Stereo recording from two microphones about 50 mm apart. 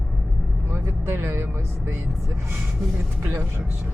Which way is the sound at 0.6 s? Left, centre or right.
Right.